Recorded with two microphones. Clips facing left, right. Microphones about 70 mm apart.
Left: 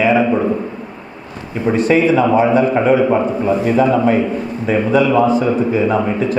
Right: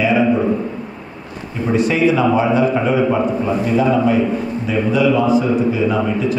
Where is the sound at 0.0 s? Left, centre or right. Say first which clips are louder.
Left 1 dB; left.